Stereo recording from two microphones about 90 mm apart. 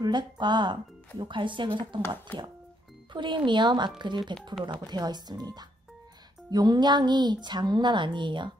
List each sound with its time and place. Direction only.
0.0 s a woman's voice: 55° right (ahead or behind)
2.0 s speech: 25° left (ahead or behind)
3.1 s a woman's voice: 60° right (ahead or behind)